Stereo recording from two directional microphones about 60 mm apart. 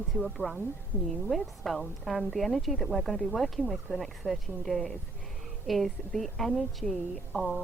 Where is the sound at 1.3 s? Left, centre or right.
Centre.